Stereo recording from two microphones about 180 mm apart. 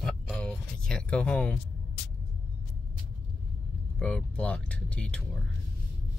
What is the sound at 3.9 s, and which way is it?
Speech, 5° left (ahead or behind).